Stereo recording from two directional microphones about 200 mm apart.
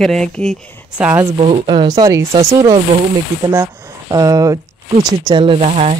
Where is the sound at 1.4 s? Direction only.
25° right (ahead or behind).